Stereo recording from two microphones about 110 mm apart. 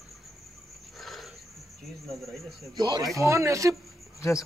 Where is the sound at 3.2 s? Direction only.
25° right (ahead or behind).